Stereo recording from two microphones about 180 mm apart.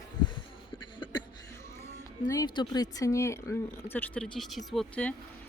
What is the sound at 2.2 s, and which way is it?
Speech, 20° left (ahead or behind).